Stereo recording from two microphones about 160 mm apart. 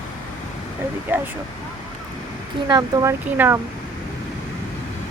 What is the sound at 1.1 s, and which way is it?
Speech, 10° right (ahead or behind).